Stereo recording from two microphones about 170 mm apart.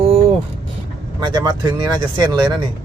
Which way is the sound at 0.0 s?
35° right (ahead or behind).